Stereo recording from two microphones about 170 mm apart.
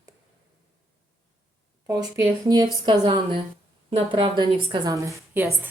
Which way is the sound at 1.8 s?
20° right (ahead or behind).